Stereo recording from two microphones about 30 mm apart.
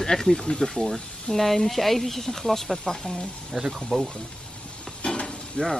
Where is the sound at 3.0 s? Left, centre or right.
Left.